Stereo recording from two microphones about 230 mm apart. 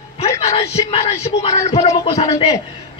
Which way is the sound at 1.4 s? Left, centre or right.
Centre.